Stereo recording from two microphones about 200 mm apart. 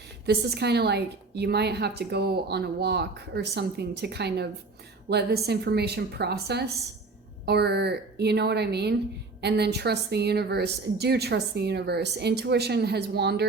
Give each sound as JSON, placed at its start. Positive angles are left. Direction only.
{"t": 0.3, "sound": "a woman's voice", "side_deg": -55}